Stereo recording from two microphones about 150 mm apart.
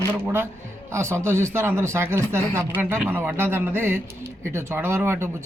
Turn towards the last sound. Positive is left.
turn(degrees=-15)  # may be behind; listen again after turning